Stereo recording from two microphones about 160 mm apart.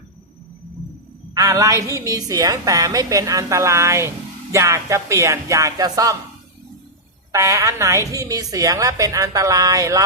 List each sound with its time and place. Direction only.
1.3 s a woman's voice: 20° right (ahead or behind)
7.3 s a woman's voice: 20° right (ahead or behind)